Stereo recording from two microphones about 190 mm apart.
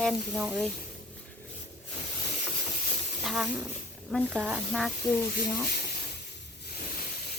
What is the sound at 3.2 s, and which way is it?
Speech, centre (ahead or behind).